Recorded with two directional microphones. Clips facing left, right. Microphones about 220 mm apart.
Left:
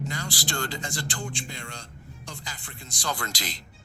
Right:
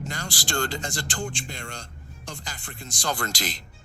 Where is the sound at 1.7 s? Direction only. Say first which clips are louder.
Right 2 dB; 75° right (ahead or behind).